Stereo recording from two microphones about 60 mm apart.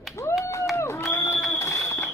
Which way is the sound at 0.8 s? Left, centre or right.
Left.